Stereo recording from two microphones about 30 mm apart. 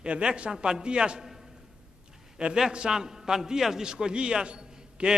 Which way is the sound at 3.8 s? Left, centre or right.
Right.